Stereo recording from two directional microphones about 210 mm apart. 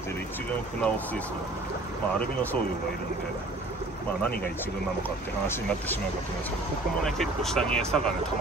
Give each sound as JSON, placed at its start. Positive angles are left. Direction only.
{"t": 0.8, "sound": "speech", "side_deg": 5}
{"t": 7.1, "sound": "speech", "side_deg": 0}